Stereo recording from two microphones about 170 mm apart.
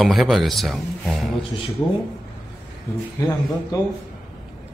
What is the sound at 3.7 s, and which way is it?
Speech, 20° left (ahead or behind).